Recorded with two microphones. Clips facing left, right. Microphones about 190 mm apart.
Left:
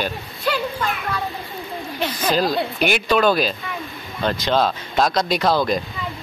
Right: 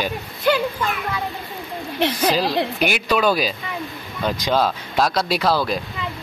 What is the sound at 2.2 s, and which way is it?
Speech, 10° right (ahead or behind).